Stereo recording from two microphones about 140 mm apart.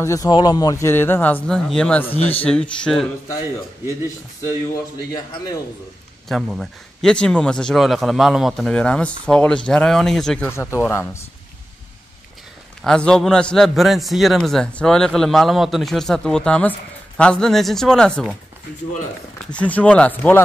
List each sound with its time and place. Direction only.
0.0 s a man's voice: 25° left (ahead or behind); by 3.1 s 5° left (ahead or behind)
6.2 s a man's voice: centre (ahead or behind)
10.5 s a man's voice: 20° left (ahead or behind)
12.8 s a man's voice: 5° left (ahead or behind)
19.5 s speech: 10° left (ahead or behind)